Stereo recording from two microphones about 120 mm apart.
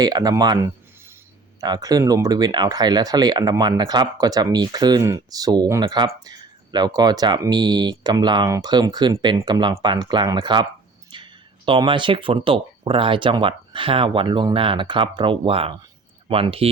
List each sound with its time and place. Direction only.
0.0 s speech: 35° right (ahead or behind); by 16.6 s 50° right (ahead or behind)